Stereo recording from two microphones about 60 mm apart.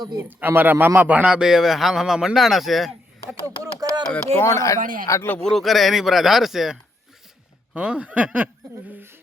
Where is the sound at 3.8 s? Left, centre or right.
Right.